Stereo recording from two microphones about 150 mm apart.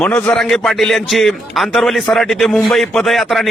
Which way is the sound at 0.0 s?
10° left (ahead or behind).